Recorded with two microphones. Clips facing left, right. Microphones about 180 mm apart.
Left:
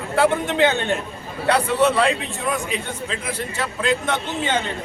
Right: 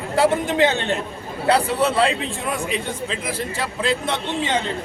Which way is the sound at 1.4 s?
30° right (ahead or behind).